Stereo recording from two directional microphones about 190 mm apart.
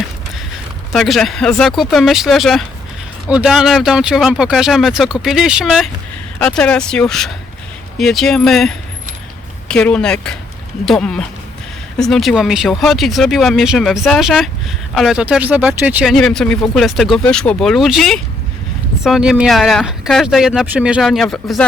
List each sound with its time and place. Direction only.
0.9 s speech: centre (ahead or behind)